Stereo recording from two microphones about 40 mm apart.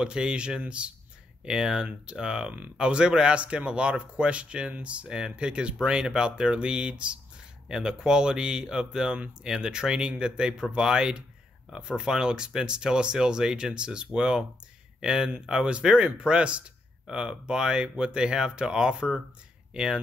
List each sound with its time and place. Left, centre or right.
0.0 s speech: right
1.4 s speech: centre
7.6 s speech: centre